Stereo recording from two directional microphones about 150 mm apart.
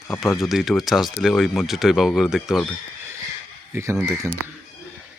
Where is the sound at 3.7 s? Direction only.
20° right (ahead or behind).